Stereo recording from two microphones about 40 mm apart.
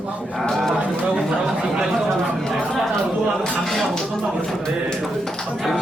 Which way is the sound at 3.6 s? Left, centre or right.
Centre.